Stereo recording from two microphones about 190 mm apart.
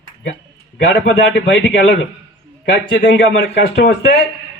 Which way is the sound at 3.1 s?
75° left (ahead or behind).